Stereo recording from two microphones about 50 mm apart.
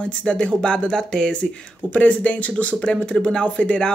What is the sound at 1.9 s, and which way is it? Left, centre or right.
Speech, left.